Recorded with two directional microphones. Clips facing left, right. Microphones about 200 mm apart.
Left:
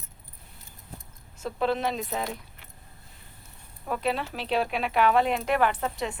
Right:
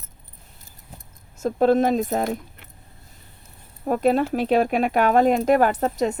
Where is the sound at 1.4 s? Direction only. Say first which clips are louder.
Right 9 dB; 45° right (ahead or behind).